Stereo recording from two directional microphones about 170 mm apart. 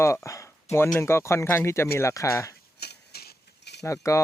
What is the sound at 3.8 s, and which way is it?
Speech, 20° left (ahead or behind).